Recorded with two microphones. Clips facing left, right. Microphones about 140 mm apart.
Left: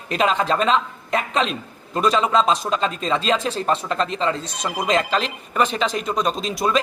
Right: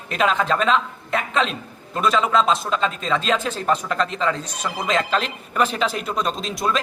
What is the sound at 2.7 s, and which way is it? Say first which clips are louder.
Speech: even; 35° left (ahead or behind).